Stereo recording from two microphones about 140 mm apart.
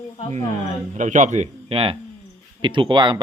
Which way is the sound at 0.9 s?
60° right (ahead or behind).